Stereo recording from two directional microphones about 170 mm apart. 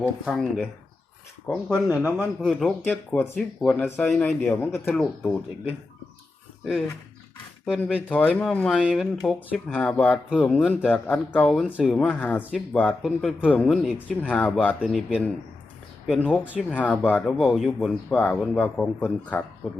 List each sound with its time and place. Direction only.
0.0 s speech: centre (ahead or behind)
1.9 s a man's voice: 10° right (ahead or behind)
2.4 s speech: centre (ahead or behind)
7.6 s speech: 5° right (ahead or behind)
8.1 s speech: 10° left (ahead or behind)
11.6 s speech: 5° right (ahead or behind)
11.9 s speech: 10° left (ahead or behind)
14.2 s speech: 10° left (ahead or behind)
16.7 s speech: 10° left (ahead or behind)